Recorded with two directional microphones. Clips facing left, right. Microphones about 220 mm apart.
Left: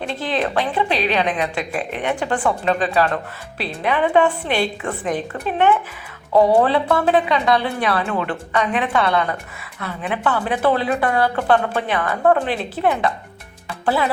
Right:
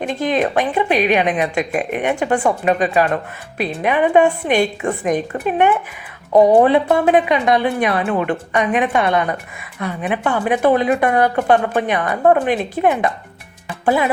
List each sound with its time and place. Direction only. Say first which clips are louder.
0.0 s a woman's voice: right 4 dB; 15° right (ahead or behind)